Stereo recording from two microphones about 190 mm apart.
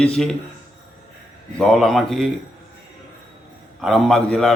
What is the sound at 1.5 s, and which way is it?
Speech, 5° left (ahead or behind).